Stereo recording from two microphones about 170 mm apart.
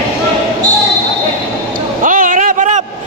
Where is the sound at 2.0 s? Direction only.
50° right (ahead or behind).